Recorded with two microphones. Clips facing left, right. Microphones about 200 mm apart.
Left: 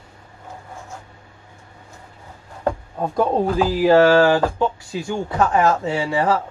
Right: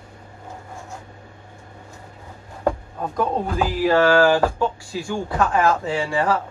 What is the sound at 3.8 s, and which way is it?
Speech, 25° left (ahead or behind).